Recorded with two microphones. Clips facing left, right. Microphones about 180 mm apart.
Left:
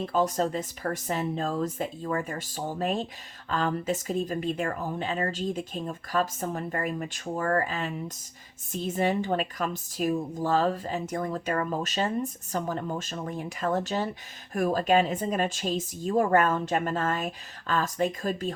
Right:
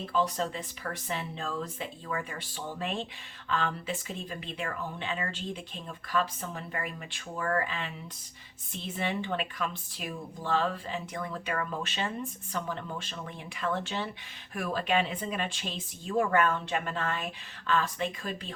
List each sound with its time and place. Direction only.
0.0 s a woman's voice: 45° left (ahead or behind)